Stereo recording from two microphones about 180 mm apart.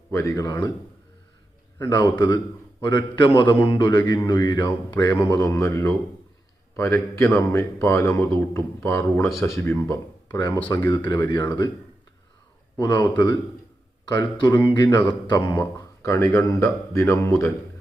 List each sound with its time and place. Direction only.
0.1 s speech: 15° left (ahead or behind)
1.9 s a man's voice: 25° left (ahead or behind)
12.8 s a man's voice: 25° left (ahead or behind)
15.5 s speech: 15° left (ahead or behind)